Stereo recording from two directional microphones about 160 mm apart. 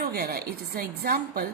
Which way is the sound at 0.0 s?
70° right (ahead or behind).